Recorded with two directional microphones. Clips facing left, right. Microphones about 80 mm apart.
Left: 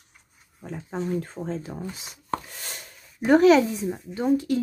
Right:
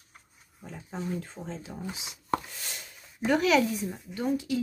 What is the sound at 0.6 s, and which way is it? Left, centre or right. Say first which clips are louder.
Speech: left 6 dB; left.